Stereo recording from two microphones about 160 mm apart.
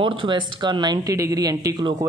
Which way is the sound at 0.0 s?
30° right (ahead or behind).